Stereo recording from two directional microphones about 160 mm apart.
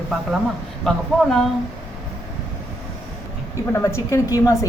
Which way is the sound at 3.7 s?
15° left (ahead or behind).